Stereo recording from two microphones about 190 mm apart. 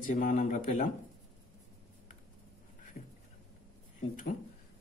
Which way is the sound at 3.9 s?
45° left (ahead or behind).